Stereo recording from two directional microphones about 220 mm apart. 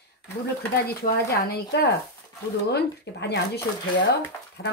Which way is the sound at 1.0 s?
45° left (ahead or behind).